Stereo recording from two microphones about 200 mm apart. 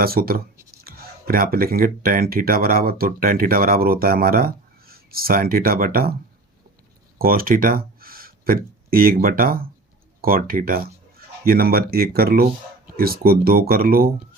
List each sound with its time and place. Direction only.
0.0 s speech: 50° right (ahead or behind)
7.2 s speech: 45° right (ahead or behind)